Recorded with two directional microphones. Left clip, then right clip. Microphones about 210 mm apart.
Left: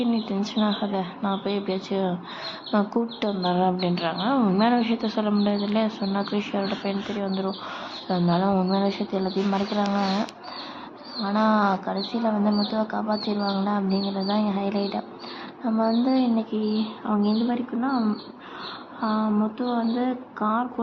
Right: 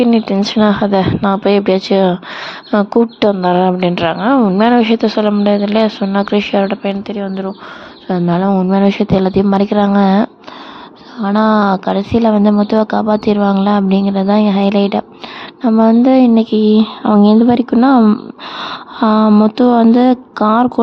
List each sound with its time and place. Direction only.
0.0 s speech: 50° right (ahead or behind)